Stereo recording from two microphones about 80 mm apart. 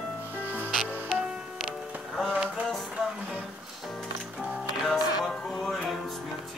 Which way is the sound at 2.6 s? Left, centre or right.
Centre.